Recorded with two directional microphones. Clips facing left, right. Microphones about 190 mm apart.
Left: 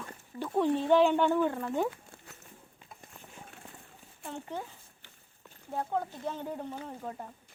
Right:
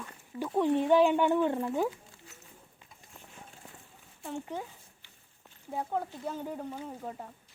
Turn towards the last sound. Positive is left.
turn(degrees=0)  # may be behind; listen again after turning